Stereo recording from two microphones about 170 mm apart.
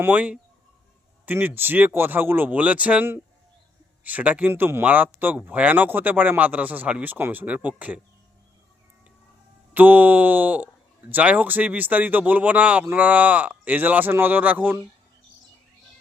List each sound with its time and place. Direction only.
0.0 s speech: 10° right (ahead or behind)
9.7 s speech: 10° right (ahead or behind)